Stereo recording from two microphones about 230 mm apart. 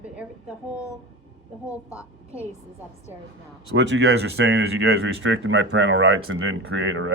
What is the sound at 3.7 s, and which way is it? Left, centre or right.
Speech, right.